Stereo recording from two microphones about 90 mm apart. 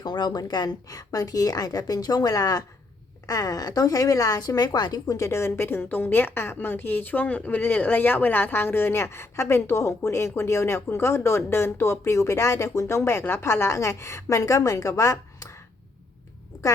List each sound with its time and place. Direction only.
0.0 s a woman's voice: 50° left (ahead or behind)